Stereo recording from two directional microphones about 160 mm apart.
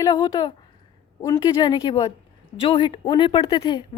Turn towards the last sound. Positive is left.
turn(degrees=30)  # may be behind; listen again after turning